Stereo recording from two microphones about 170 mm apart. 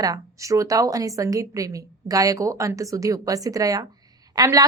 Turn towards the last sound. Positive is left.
turn(degrees=-20)  # may be behind; listen again after turning